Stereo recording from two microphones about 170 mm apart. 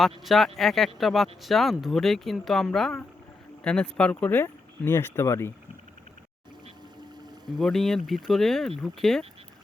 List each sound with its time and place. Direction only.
0.3 s speech: centre (ahead or behind)
7.5 s speech: centre (ahead or behind)